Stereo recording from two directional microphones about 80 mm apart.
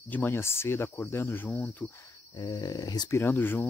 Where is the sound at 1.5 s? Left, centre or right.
Centre.